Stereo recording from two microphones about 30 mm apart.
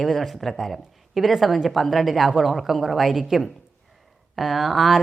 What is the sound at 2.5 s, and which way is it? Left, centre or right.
Speech, centre.